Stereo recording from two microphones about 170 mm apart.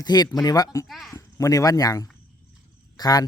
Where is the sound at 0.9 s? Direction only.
Centre (ahead or behind).